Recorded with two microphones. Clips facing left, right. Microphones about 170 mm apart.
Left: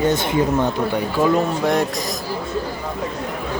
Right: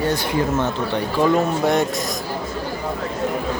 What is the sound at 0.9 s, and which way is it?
Speech, centre (ahead or behind).